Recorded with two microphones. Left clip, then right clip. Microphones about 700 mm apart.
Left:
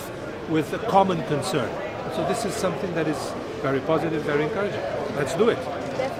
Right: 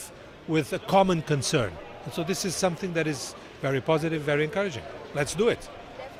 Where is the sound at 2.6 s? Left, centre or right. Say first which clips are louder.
Left 2 dB; right.